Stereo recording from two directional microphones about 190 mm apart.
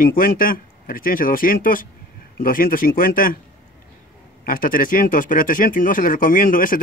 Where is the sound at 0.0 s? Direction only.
45° left (ahead or behind).